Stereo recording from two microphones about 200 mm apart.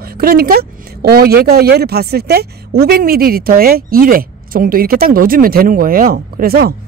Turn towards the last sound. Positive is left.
turn(degrees=-50)  # may be behind; listen again after turning